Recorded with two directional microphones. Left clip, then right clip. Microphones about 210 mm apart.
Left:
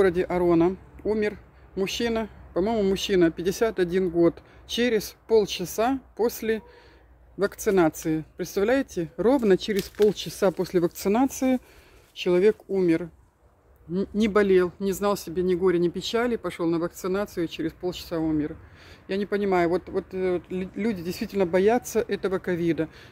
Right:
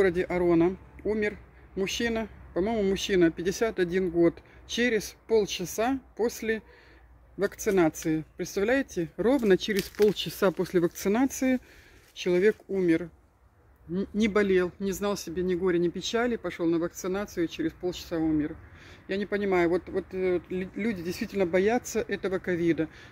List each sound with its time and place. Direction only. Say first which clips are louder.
0.0 s a man's voice: left 3 dB; 5° left (ahead or behind)